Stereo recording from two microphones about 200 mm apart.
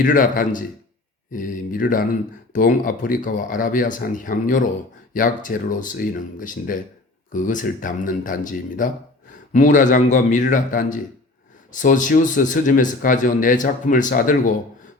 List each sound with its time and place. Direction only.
0.0 s speech: 40° left (ahead or behind)